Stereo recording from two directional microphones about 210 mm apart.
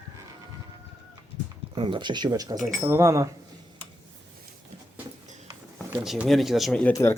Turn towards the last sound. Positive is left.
turn(degrees=10)  # may be behind; listen again after turning